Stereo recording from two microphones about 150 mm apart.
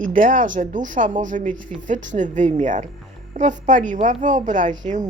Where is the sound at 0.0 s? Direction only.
65° right (ahead or behind).